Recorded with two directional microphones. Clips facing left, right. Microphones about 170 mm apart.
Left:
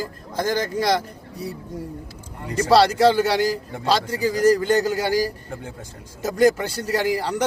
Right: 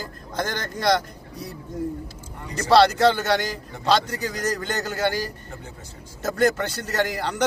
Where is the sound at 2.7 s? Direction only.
5° left (ahead or behind).